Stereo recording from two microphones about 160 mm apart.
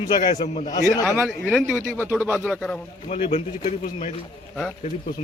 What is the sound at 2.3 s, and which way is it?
Speech, 10° left (ahead or behind).